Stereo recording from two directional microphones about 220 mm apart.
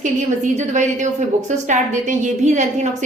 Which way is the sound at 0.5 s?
35° right (ahead or behind).